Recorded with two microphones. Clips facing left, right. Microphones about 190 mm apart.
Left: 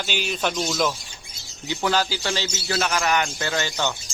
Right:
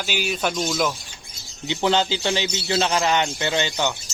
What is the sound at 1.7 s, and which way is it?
A man's voice, 20° right (ahead or behind).